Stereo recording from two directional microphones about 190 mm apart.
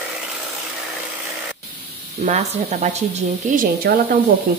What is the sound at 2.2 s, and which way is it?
Speech, 35° right (ahead or behind).